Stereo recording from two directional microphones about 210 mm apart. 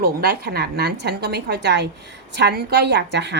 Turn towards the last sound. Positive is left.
turn(degrees=-55)  # may be behind; listen again after turning